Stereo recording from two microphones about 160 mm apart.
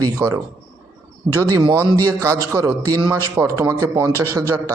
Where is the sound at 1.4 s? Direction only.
25° right (ahead or behind).